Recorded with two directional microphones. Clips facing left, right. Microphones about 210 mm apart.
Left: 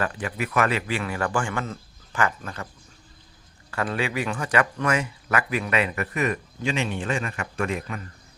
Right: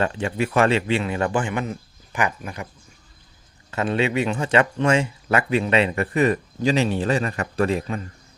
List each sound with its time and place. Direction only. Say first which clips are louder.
0.0 s speech: right 5 dB; 25° right (ahead or behind)
3.7 s speech: right 5 dB; 25° right (ahead or behind)